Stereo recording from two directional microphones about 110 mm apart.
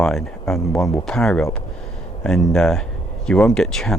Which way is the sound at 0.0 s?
5° left (ahead or behind).